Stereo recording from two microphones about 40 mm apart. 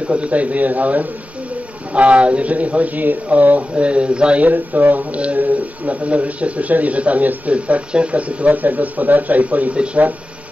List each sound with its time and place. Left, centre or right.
0.0 s speech: right
4.5 s speech: right